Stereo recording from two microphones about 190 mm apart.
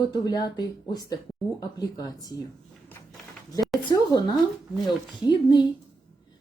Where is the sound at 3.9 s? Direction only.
20° left (ahead or behind).